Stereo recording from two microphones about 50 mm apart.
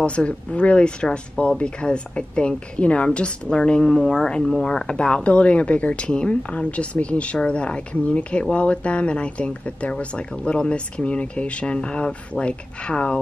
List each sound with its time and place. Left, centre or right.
0.0 s speech: left
1.0 s speech: centre